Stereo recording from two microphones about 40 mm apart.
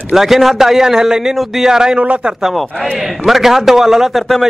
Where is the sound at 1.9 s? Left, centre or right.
Right.